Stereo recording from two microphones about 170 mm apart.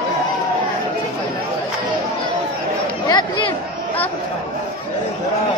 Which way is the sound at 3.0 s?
25° left (ahead or behind).